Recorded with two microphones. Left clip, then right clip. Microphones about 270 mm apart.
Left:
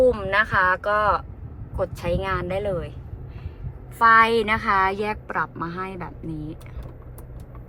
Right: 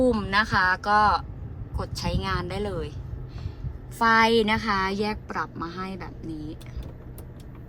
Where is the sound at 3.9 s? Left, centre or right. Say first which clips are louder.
Left 4 dB; centre.